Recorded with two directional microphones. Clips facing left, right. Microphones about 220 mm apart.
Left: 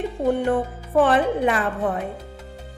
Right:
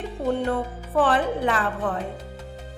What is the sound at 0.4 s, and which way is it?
Speech, 20° left (ahead or behind).